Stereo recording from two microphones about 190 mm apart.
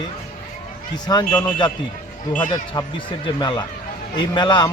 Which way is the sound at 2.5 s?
25° left (ahead or behind).